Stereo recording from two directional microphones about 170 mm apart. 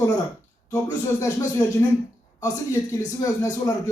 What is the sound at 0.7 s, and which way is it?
Speech, 20° left (ahead or behind).